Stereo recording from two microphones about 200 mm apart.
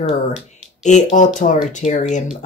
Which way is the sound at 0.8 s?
35° left (ahead or behind).